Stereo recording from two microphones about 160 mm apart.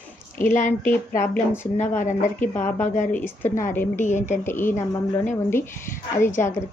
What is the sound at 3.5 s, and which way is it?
Speech, 55° left (ahead or behind).